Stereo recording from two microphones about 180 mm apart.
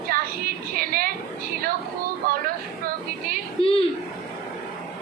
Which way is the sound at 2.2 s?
50° right (ahead or behind).